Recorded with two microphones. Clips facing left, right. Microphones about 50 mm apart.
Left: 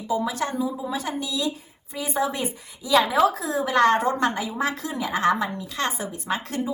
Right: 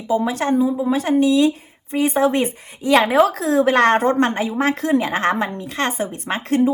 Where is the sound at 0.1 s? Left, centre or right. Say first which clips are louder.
Right 7 dB; right.